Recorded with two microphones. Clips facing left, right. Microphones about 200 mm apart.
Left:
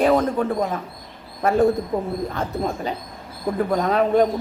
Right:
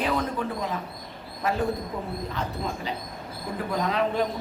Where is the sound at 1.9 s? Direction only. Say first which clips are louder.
Left 7 dB; 45° left (ahead or behind).